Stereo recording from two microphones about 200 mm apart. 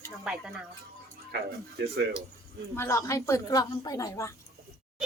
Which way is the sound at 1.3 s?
50° right (ahead or behind).